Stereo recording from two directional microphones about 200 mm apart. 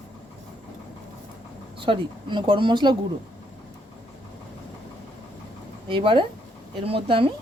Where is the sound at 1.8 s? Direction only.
25° right (ahead or behind).